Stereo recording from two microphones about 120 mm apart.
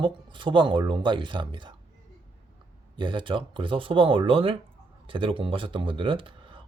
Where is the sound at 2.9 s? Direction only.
45° right (ahead or behind).